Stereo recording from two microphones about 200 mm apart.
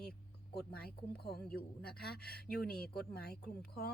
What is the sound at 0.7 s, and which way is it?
A woman's voice, 50° left (ahead or behind).